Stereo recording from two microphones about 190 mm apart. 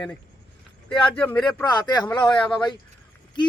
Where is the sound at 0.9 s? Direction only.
25° left (ahead or behind).